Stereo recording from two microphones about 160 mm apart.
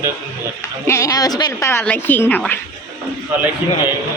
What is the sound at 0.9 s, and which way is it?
Speech, 20° left (ahead or behind).